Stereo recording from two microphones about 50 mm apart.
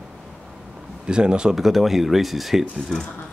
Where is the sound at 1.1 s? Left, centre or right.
Centre.